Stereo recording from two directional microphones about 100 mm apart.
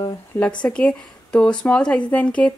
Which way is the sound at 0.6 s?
10° left (ahead or behind).